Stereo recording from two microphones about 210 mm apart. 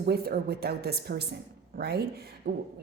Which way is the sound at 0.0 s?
50° right (ahead or behind).